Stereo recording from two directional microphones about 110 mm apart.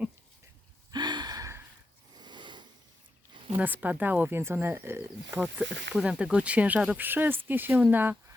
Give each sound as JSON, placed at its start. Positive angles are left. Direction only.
{"t": 0.9, "sound": "gasp", "side_deg": -40}
{"t": 2.2, "sound": "a sound", "side_deg": -45}
{"t": 3.6, "sound": "speech", "side_deg": -15}